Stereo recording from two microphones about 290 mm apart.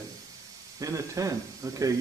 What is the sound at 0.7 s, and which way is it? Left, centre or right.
Speech, centre.